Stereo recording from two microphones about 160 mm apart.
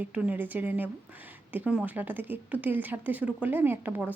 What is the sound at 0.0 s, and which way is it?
Speech, 10° right (ahead or behind).